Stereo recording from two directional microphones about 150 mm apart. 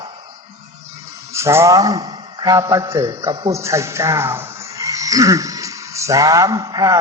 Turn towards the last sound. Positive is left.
turn(degrees=-25)  # may be behind; listen again after turning